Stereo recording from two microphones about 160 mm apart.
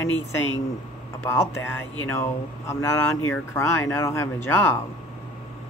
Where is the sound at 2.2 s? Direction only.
15° left (ahead or behind).